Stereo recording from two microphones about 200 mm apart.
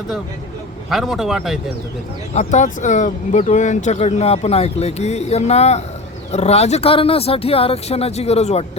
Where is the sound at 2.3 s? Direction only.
35° left (ahead or behind).